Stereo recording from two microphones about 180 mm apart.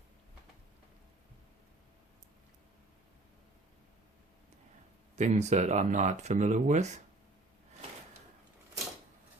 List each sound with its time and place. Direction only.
5.1 s speech: 40° right (ahead or behind)